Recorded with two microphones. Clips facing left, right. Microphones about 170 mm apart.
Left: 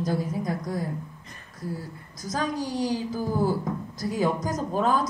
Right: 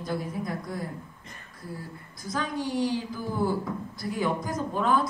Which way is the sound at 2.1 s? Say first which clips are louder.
Left 3 dB; 40° left (ahead or behind).